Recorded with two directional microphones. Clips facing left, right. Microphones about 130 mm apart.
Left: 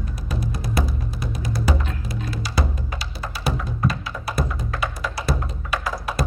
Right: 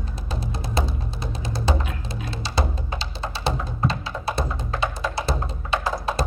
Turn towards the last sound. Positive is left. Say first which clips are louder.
# right 2 dB
turn(degrees=-25)  # may be behind; listen again after turning